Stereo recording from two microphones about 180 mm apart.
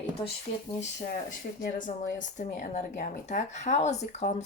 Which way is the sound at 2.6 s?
40° left (ahead or behind).